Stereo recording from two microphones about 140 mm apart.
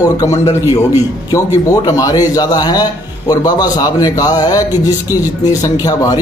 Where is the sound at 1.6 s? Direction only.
25° left (ahead or behind).